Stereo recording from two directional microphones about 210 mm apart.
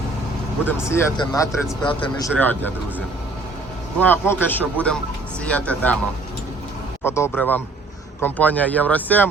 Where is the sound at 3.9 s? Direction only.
10° left (ahead or behind).